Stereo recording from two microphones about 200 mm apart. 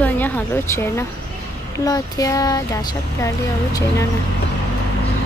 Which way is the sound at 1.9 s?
15° left (ahead or behind).